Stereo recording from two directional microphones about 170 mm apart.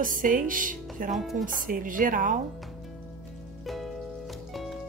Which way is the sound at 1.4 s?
50° right (ahead or behind).